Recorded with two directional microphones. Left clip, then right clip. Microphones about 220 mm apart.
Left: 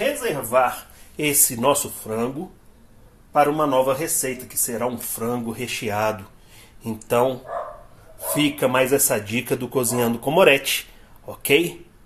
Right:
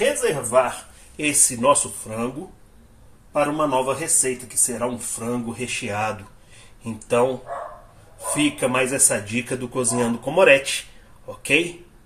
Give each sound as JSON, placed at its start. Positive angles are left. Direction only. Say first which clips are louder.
{"t": 0.2, "sound": "speech", "louder": "right 2 dB", "side_deg": 20}
{"t": 0.7, "sound": "speech", "louder": "left 2 dB", "side_deg": 35}
{"t": 3.3, "sound": "speech", "louder": "left 3 dB", "side_deg": 35}
{"t": 8.3, "sound": "speech", "louder": "left 1 dB", "side_deg": 35}